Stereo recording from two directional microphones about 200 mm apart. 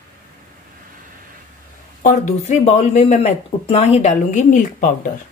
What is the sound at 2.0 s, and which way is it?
Speech, 40° left (ahead or behind).